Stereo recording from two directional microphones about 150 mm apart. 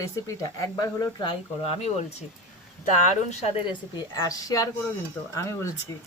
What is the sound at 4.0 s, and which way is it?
Speech, 25° left (ahead or behind).